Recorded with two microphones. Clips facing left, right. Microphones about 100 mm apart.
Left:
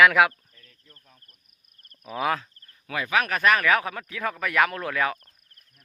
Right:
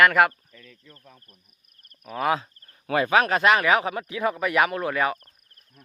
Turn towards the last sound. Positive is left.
turn(degrees=-5)  # may be behind; listen again after turning